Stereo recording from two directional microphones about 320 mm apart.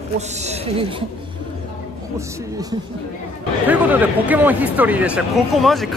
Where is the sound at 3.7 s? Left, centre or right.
Centre.